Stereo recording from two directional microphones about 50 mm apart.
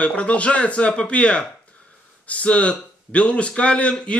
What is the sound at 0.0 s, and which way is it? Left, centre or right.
Speech, left.